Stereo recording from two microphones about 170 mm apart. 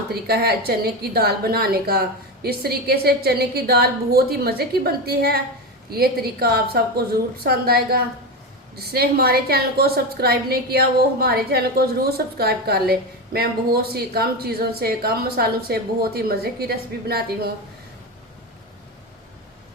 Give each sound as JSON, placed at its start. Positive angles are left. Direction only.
{"t": 0.1, "sound": "a woman's voice", "side_deg": -70}